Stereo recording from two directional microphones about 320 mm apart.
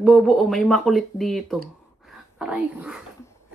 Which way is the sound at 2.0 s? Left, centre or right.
Centre.